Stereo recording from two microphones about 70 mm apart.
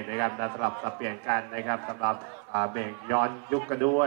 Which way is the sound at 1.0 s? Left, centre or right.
Left.